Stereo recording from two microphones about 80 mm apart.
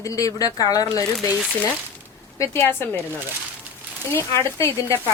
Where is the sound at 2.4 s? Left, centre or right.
Left.